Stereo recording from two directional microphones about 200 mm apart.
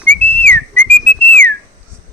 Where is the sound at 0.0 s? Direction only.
10° left (ahead or behind).